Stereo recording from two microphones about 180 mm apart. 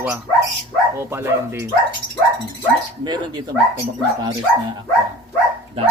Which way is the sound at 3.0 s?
25° right (ahead or behind).